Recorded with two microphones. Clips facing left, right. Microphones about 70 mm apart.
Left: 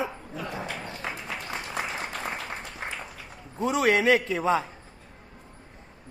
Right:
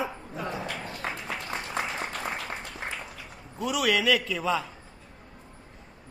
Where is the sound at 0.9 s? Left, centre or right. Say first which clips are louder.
Right 1 dB; centre.